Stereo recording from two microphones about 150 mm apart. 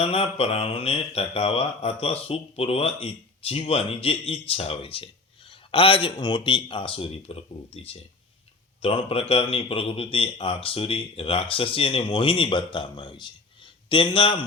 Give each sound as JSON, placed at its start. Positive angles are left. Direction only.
{"t": 0.0, "sound": "speech", "side_deg": 40}